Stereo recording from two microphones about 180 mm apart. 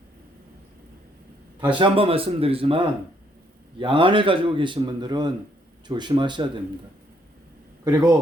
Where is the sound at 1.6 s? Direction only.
25° right (ahead or behind).